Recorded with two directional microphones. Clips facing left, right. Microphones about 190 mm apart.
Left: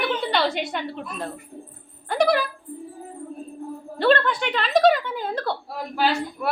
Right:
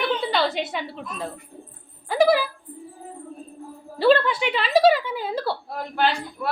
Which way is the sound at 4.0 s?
5° right (ahead or behind).